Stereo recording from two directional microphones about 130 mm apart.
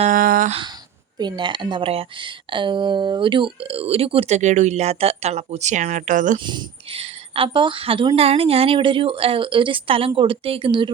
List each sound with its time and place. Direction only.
0.0 s a sound: 90° right
1.2 s speech: 40° right (ahead or behind); by 6.4 s 80° right
6.4 s speech: 35° right (ahead or behind)
6.9 s speech: 45° right (ahead or behind)